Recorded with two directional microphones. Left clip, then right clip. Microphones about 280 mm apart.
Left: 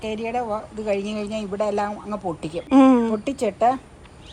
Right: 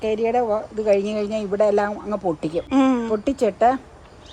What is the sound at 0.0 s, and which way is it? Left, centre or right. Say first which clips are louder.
Speech: right 6 dB; right.